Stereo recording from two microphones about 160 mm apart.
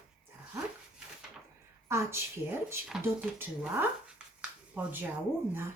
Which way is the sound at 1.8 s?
15° right (ahead or behind).